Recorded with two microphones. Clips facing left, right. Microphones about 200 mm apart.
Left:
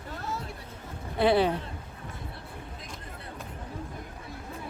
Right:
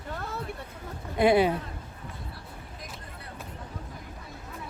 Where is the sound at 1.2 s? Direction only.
10° right (ahead or behind).